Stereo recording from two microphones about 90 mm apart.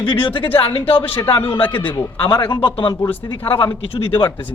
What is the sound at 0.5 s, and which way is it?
Speech, 90° left.